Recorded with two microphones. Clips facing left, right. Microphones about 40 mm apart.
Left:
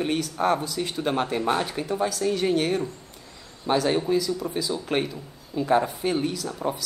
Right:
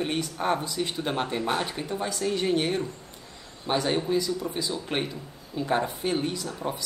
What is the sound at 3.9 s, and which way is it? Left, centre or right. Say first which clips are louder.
A woman's voice: left 2 dB; centre.